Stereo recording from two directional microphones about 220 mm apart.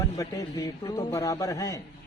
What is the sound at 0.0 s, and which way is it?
Speech, 15° left (ahead or behind).